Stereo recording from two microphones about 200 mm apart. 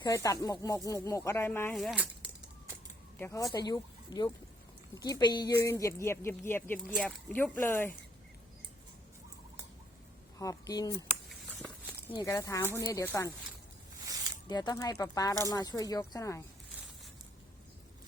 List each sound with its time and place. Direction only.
0.0 s speech: 15° left (ahead or behind)
1.7 s speech: centre (ahead or behind)
3.2 s speech: 15° left (ahead or behind)
10.3 s speech: 15° left (ahead or behind)
11.3 s a sound: 5° left (ahead or behind)
12.1 s speech: 15° left (ahead or behind)
14.4 s speech: 20° left (ahead or behind)